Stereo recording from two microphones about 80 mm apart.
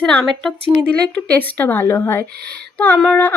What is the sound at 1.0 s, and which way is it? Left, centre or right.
Speech, centre.